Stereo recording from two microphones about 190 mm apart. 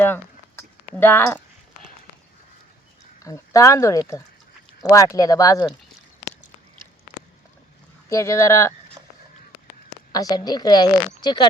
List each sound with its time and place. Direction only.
0.9 s speech: 10° left (ahead or behind)
3.2 s a woman's voice: 15° left (ahead or behind)
8.1 s speech: 15° left (ahead or behind)
10.1 s a woman's voice: 20° left (ahead or behind)